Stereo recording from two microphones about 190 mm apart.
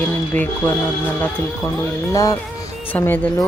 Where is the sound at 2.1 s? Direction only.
15° left (ahead or behind).